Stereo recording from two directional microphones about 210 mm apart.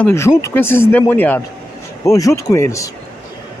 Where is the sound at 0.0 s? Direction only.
10° left (ahead or behind).